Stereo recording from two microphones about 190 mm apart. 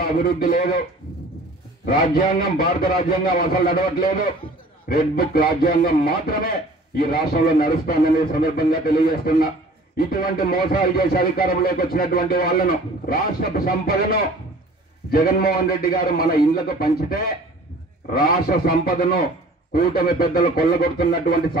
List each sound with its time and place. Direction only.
0.0 s speech: 50° left (ahead or behind)
1.9 s speech: 50° left (ahead or behind)
4.8 s speech: 50° left (ahead or behind)
15.0 s speech: 50° left (ahead or behind)